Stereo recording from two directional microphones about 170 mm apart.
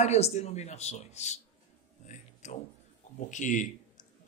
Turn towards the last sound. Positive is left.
turn(degrees=50)  # may be behind; listen again after turning